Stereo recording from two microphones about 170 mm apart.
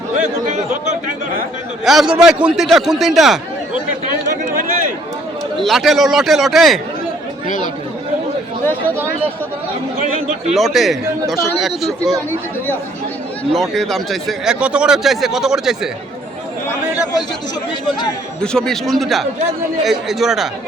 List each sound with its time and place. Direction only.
0.2 s speech: 45° right (ahead or behind)
1.8 s speech: centre (ahead or behind)
5.5 s speech: centre (ahead or behind)
7.4 s speech: 50° left (ahead or behind)
10.5 s speech: centre (ahead or behind)
13.5 s speech: centre (ahead or behind)
18.4 s speech: 5° left (ahead or behind)